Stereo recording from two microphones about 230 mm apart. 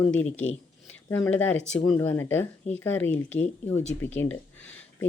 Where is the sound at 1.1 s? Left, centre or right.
Centre.